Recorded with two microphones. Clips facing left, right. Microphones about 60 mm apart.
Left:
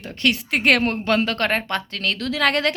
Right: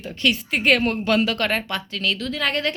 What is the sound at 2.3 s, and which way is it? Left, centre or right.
Speech, left.